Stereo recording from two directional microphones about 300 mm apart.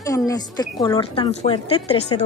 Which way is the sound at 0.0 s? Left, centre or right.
Centre.